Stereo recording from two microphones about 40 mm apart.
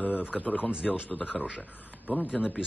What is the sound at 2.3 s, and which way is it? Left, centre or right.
Speech, centre.